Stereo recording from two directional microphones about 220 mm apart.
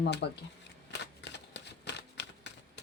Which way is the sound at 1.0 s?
50° left (ahead or behind).